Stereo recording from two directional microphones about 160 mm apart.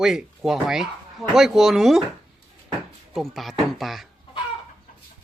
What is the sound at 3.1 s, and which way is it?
Speech, centre (ahead or behind).